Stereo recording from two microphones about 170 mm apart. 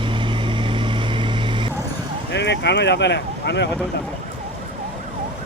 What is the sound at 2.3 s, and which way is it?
Speech, 90° left.